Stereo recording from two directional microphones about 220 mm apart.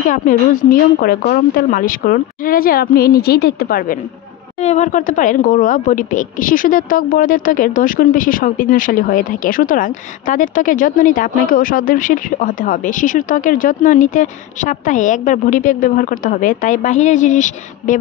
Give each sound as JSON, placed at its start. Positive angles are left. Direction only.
{"t": 0.1, "sound": "speech", "side_deg": 40}